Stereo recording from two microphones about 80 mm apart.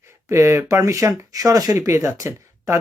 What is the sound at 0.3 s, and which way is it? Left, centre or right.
Speech, right.